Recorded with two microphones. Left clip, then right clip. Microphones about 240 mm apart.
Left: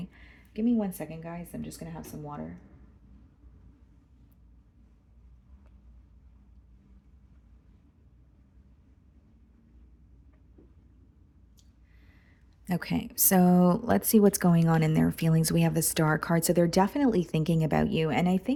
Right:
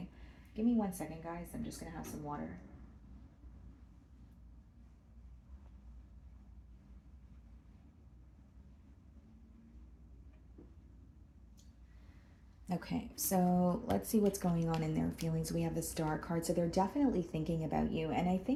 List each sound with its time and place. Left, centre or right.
0.5 s speech: left
1.8 s speech: left
12.6 s speech: left